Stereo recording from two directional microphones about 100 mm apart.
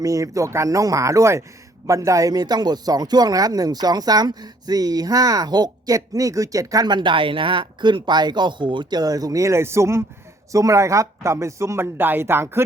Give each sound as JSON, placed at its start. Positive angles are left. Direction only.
{"t": 0.0, "sound": "speech", "side_deg": -35}